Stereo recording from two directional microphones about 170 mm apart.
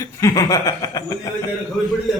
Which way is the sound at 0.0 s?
20° left (ahead or behind).